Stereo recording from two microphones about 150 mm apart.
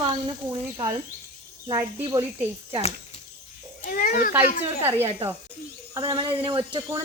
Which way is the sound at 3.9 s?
70° left (ahead or behind).